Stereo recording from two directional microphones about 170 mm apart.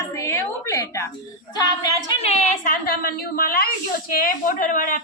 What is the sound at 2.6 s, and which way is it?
A woman's voice, 55° left (ahead or behind).